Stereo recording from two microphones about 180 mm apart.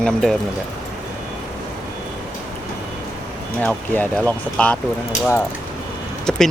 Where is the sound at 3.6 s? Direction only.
10° left (ahead or behind).